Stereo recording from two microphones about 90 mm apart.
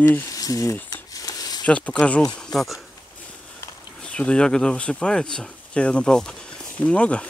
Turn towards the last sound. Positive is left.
turn(degrees=15)  # may be behind; listen again after turning